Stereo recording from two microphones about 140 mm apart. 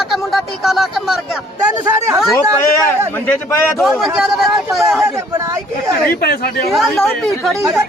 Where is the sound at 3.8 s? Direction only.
Centre (ahead or behind).